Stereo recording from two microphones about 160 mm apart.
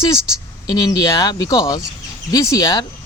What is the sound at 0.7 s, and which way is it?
Speech, 25° left (ahead or behind).